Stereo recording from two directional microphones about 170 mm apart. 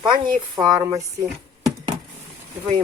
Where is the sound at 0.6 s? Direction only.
20° right (ahead or behind).